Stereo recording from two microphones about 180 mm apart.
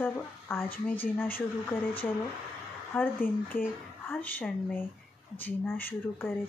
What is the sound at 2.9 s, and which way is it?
Speech, 10° left (ahead or behind).